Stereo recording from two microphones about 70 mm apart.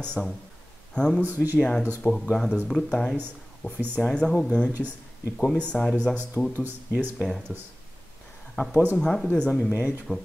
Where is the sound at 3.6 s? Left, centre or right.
Left.